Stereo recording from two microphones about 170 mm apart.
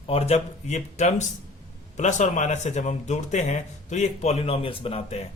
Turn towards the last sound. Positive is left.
turn(degrees=35)  # may be behind; listen again after turning